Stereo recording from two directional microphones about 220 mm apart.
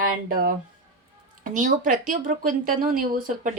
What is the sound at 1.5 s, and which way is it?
Speech, 35° right (ahead or behind).